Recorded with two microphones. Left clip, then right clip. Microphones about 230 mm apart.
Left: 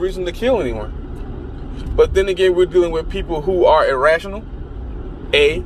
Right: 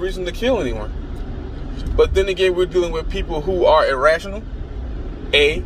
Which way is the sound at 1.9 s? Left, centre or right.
Centre.